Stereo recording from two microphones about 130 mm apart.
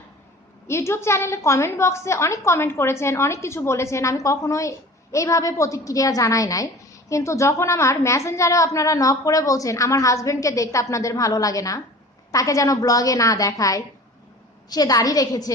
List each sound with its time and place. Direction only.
0.7 s a woman's voice: 20° left (ahead or behind)